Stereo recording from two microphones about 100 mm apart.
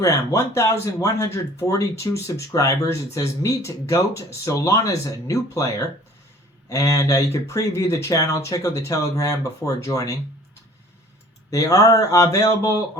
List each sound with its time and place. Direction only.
0.0 s speech: 30° left (ahead or behind)
11.5 s speech: 35° left (ahead or behind)